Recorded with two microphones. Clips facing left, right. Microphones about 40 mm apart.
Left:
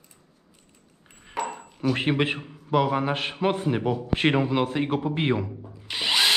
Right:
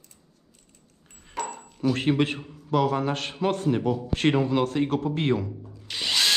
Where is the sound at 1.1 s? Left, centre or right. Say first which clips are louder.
Left 2 dB; centre.